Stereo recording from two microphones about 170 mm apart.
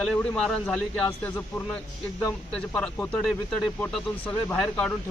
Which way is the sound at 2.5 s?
5° left (ahead or behind).